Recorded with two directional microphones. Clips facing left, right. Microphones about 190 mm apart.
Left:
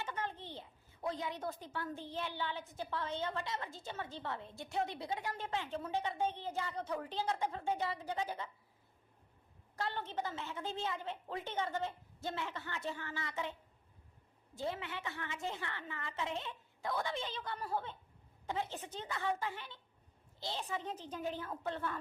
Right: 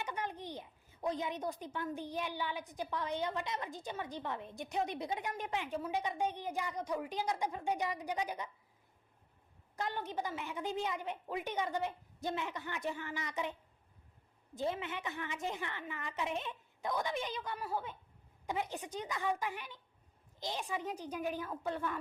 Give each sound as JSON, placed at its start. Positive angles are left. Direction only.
{"t": 0.0, "sound": "a child's voice", "side_deg": -15}
{"t": 9.7, "sound": "a child's voice", "side_deg": -15}